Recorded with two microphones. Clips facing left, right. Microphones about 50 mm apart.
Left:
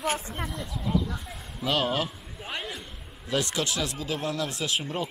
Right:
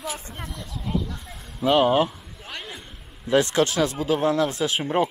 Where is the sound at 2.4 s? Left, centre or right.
Centre.